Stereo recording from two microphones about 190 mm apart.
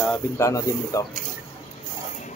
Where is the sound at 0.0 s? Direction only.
5° left (ahead or behind).